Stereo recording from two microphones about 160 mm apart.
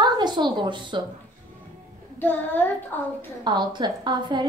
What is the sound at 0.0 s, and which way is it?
A woman's voice, 25° right (ahead or behind).